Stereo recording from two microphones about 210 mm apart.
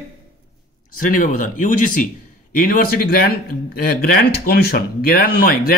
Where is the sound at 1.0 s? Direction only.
40° left (ahead or behind).